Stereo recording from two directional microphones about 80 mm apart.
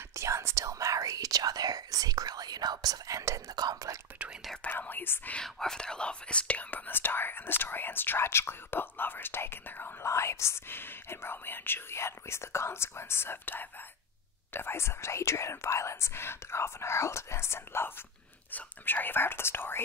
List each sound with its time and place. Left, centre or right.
0.1 s speech: right
4.6 s speech: left
5.3 s speech: centre; by 9.9 s left
10.0 s speech: left